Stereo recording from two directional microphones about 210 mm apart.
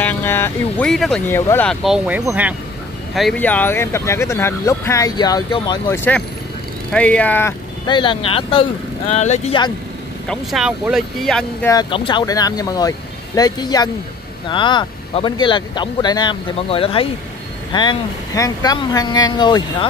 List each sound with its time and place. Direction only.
0.0 s speech: 10° left (ahead or behind); by 2.5 s 5° right (ahead or behind)
3.2 s speech: 5° left (ahead or behind)
6.9 s speech: 5° left (ahead or behind)
7.8 s speech: 20° left (ahead or behind)
10.2 s speech: centre (ahead or behind)
11.7 s speech: 25° left (ahead or behind)